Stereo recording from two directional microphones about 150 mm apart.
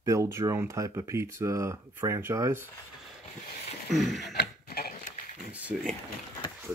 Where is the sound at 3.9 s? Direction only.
Centre (ahead or behind).